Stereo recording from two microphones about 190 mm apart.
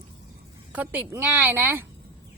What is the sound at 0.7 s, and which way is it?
A woman's voice, 10° right (ahead or behind).